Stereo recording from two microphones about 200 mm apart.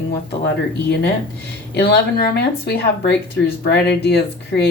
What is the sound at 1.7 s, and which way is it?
Speech, 50° left (ahead or behind).